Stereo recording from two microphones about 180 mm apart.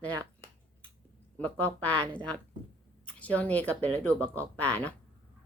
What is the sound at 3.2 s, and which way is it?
Speech, 10° left (ahead or behind).